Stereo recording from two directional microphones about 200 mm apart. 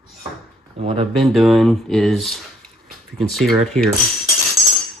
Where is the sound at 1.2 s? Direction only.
Centre (ahead or behind).